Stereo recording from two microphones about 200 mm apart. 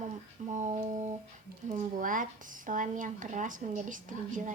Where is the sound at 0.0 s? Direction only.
35° right (ahead or behind).